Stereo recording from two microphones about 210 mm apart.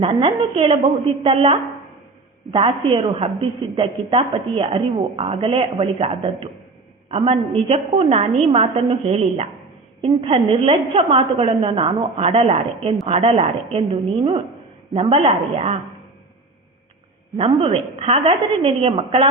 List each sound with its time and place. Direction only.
0.0 s a woman's voice: 25° right (ahead or behind)
14.9 s a woman's voice: 25° right (ahead or behind)
17.3 s a woman's voice: 25° right (ahead or behind)